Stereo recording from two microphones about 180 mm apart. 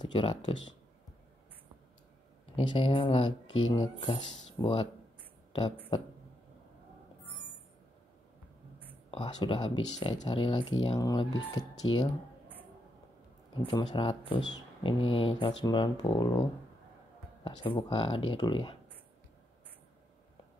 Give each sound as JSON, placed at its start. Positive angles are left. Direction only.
{"t": 0.0, "sound": "speech", "side_deg": 25}
{"t": 2.5, "sound": "speech", "side_deg": 25}
{"t": 9.1, "sound": "speech", "side_deg": 30}
{"t": 13.7, "sound": "speech", "side_deg": 25}